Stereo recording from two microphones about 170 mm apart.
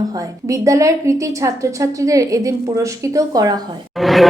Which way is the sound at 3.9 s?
Centre (ahead or behind).